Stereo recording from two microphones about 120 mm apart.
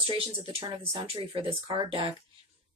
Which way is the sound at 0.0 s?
50° right (ahead or behind).